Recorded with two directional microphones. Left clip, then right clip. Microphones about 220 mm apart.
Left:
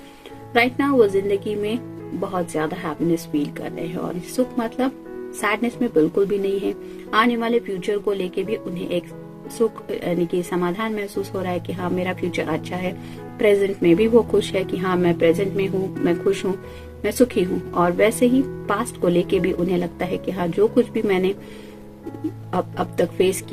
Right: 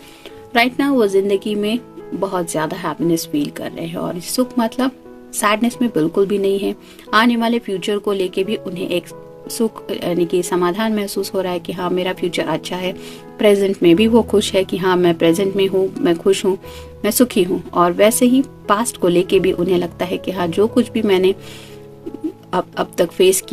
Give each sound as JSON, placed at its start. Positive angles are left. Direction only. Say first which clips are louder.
{"t": 0.5, "sound": "speech", "louder": "right 2 dB", "side_deg": -45}
{"t": 22.5, "sound": "speech", "louder": "right 4 dB", "side_deg": -50}